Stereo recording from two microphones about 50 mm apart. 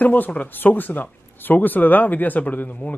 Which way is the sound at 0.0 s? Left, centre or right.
Left.